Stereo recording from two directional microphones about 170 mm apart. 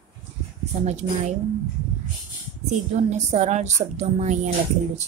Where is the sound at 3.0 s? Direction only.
40° right (ahead or behind).